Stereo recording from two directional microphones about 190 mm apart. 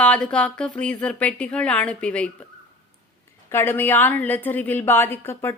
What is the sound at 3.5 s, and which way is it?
A woman's voice, 10° left (ahead or behind).